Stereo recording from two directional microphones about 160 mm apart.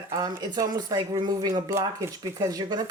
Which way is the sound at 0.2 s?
25° right (ahead or behind).